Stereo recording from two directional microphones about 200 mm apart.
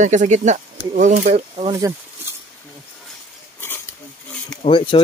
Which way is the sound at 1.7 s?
15° right (ahead or behind).